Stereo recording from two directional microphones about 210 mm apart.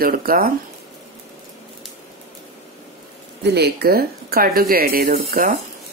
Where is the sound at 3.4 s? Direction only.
50° right (ahead or behind).